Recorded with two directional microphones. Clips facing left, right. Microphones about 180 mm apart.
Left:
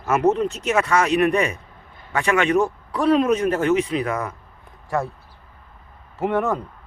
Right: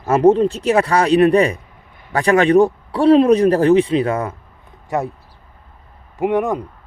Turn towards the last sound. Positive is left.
turn(degrees=-15)  # may be behind; listen again after turning